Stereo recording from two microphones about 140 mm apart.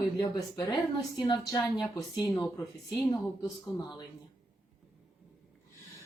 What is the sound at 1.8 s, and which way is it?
Speech, 25° left (ahead or behind).